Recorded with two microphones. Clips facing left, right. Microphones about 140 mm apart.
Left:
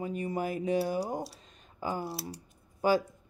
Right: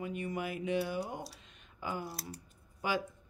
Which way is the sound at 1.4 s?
40° left (ahead or behind).